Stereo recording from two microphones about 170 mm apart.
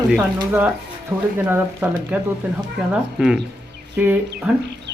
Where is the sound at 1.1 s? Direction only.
Centre (ahead or behind).